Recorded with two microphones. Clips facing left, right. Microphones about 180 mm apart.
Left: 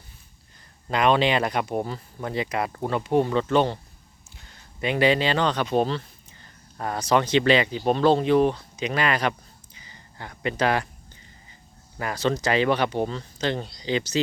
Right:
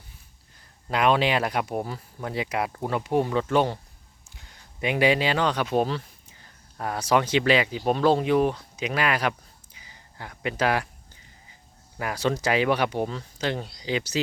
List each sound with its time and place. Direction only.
0.9 s speech: 5° right (ahead or behind)
9.7 s a sound: 10° right (ahead or behind)
11.9 s speech: 10° right (ahead or behind)